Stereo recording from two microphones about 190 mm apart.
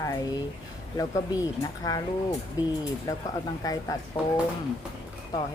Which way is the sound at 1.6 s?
20° left (ahead or behind).